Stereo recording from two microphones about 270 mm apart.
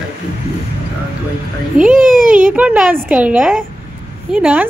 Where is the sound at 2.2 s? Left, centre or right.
Right.